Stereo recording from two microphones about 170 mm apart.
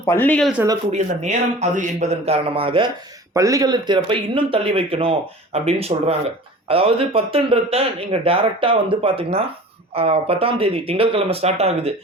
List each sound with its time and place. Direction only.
0.0 s speech: 15° left (ahead or behind)
0.9 s speech: 40° right (ahead or behind)
3.3 s speech: 20° right (ahead or behind); by 11.9 s 35° right (ahead or behind)